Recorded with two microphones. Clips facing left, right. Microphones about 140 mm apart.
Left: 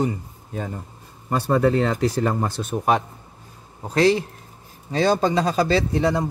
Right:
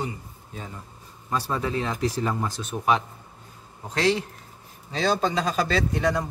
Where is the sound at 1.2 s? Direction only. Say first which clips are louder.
Left 8 dB; 60° left (ahead or behind).